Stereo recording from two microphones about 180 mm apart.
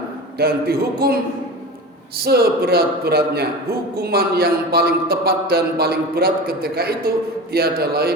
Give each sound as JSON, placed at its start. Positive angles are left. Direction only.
{"t": 0.3, "sound": "a man's voice", "side_deg": -60}